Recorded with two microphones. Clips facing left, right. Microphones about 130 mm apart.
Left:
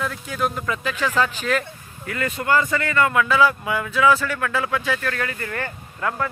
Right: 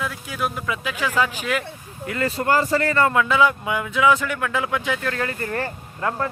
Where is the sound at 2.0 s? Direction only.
30° right (ahead or behind).